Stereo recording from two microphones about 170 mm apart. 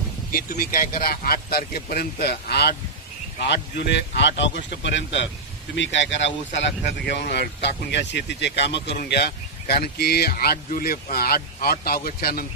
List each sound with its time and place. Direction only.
0.3 s speech: 55° left (ahead or behind)
3.4 s speech: 85° left; by 12.4 s 60° left (ahead or behind)